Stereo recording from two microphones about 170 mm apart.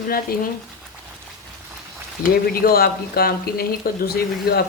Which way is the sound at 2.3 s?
65° left (ahead or behind).